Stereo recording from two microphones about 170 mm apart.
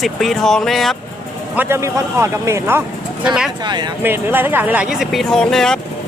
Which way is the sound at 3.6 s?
25° right (ahead or behind).